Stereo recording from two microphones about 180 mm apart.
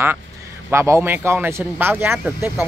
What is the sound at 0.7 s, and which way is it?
Speech, 15° right (ahead or behind).